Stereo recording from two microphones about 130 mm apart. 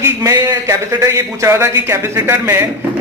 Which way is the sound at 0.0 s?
25° right (ahead or behind).